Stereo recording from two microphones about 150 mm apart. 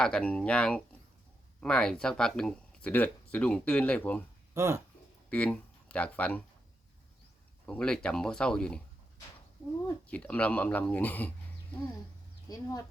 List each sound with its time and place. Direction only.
0.0 s speech: 5° left (ahead or behind)
4.5 s speech: 20° right (ahead or behind)
5.3 s speech: 10° left (ahead or behind)
7.7 s speech: 5° left (ahead or behind)
10.1 s speech: 10° left (ahead or behind)
12.5 s speech: 25° left (ahead or behind)